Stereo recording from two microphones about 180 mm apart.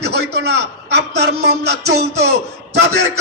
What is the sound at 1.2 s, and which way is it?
A man's voice, 65° right (ahead or behind).